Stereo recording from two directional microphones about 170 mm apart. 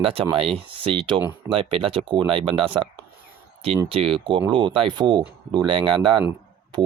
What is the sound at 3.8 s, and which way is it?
Speech, 35° right (ahead or behind).